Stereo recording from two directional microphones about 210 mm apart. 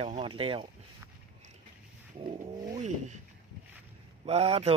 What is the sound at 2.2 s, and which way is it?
Speech, 25° right (ahead or behind).